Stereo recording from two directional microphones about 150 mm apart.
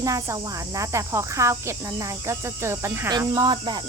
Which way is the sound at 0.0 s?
20° right (ahead or behind).